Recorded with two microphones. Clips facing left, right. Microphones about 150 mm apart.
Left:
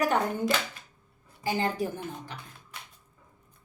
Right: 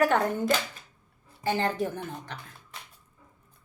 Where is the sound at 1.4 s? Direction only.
10° left (ahead or behind).